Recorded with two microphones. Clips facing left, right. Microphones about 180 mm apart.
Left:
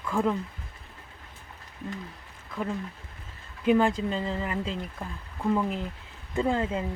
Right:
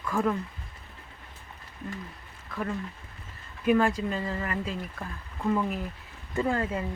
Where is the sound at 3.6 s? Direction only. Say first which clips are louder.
Left 1 dB; 15° left (ahead or behind).